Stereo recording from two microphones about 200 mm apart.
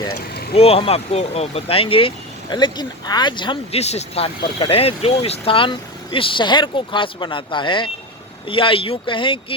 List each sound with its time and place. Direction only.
0.5 s speech: 30° left (ahead or behind)